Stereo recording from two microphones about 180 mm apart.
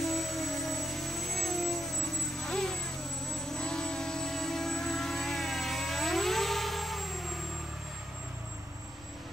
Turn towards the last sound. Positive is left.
turn(degrees=0)  # may be behind; listen again after turning